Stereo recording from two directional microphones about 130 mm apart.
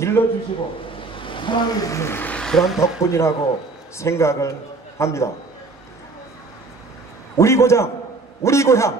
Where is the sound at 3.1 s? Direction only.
20° left (ahead or behind).